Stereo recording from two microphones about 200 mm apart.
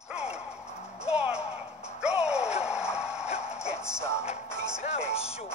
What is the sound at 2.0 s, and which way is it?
Music, 5° right (ahead or behind).